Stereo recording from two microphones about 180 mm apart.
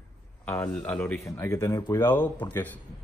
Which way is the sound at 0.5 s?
10° left (ahead or behind).